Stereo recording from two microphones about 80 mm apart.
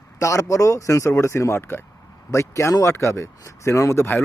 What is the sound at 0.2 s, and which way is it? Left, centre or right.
A man's voice, left.